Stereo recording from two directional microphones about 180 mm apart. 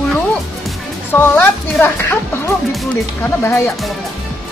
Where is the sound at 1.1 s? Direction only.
10° left (ahead or behind).